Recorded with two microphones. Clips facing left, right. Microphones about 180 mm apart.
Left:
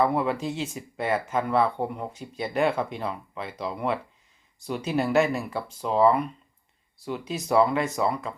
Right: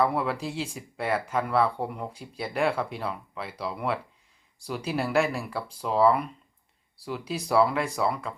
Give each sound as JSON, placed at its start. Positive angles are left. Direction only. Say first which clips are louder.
{"t": 0.0, "sound": "speech", "louder": "left 2 dB", "side_deg": 0}